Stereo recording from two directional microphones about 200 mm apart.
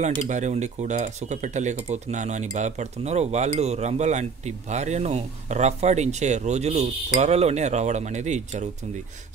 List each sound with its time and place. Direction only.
0.3 s speech: 35° right (ahead or behind)